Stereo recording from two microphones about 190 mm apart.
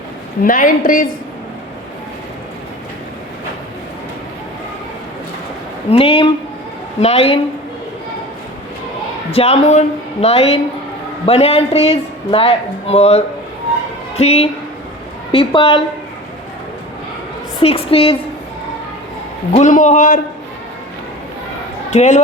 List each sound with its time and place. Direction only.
0.4 s a woman's voice: 45° left (ahead or behind)
5.9 s a woman's voice: 30° left (ahead or behind)
9.3 s a man's voice: 30° left (ahead or behind)
17.6 s a man's voice: 30° left (ahead or behind)
19.5 s a man's voice: 40° left (ahead or behind)
21.8 s speech: 40° left (ahead or behind)